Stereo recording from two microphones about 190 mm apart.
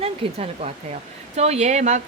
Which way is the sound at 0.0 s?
30° right (ahead or behind).